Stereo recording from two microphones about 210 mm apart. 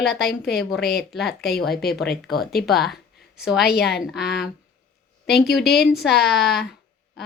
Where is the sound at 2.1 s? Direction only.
50° left (ahead or behind).